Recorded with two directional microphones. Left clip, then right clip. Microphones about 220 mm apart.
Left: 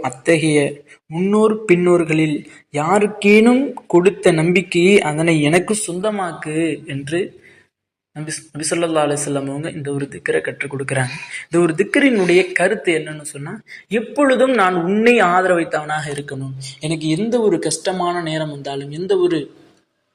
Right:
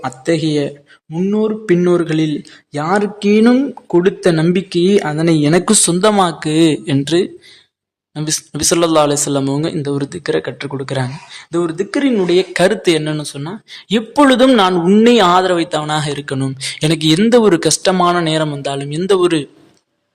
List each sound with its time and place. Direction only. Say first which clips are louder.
1.1 s speech: left 2 dB; 20° right (ahead or behind)
5.6 s speech: right 8 dB; 50° right (ahead or behind)
6.2 s a man's voice: right 7 dB; 30° right (ahead or behind); by 11.9 s 5° right (ahead or behind)
11.9 s speech: right 1 dB; 20° right (ahead or behind)
13.9 s a man's voice: right 4 dB; 30° right (ahead or behind)